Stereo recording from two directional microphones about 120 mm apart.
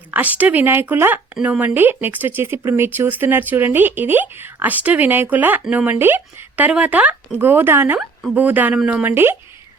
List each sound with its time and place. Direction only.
0.1 s speech: 15° right (ahead or behind)